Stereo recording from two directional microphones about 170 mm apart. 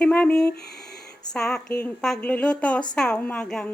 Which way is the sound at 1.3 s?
5° left (ahead or behind).